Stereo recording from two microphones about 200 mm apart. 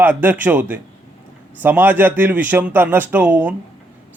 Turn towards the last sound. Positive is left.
turn(degrees=-5)  # may be behind; listen again after turning